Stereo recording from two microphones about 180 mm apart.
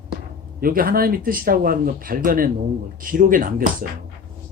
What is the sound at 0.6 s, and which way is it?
Speech, 55° right (ahead or behind).